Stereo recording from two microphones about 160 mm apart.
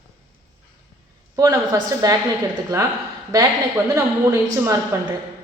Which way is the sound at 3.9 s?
20° right (ahead or behind).